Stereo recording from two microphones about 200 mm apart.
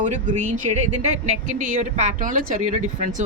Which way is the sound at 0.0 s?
35° right (ahead or behind).